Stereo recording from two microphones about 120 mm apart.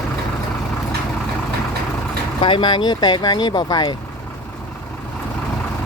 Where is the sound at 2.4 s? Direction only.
40° left (ahead or behind).